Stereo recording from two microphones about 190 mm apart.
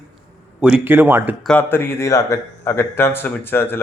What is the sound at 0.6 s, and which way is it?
Speech, 5° right (ahead or behind).